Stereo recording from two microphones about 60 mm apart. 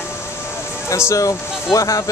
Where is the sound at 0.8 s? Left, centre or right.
Left.